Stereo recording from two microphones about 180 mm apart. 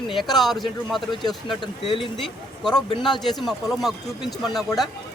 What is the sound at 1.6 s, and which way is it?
Speech, 30° left (ahead or behind).